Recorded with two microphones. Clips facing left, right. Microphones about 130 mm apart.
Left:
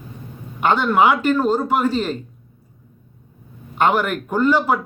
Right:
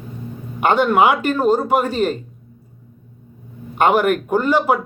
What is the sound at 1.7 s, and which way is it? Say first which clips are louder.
Speech: right 2 dB; 45° right (ahead or behind).